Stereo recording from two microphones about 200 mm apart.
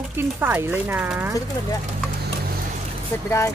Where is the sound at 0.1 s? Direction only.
10° right (ahead or behind).